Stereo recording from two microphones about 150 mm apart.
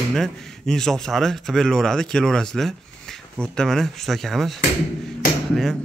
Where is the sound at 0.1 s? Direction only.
Centre (ahead or behind).